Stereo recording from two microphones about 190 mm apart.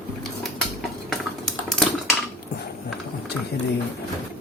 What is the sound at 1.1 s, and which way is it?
Typing, centre (ahead or behind).